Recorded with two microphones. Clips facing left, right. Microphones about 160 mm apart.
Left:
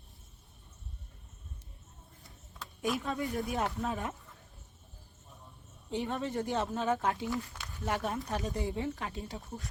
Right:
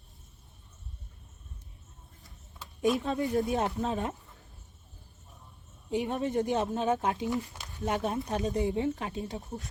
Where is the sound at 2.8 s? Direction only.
25° right (ahead or behind).